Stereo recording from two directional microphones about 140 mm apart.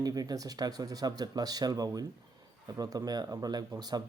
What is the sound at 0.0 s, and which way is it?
Speech, 25° right (ahead or behind).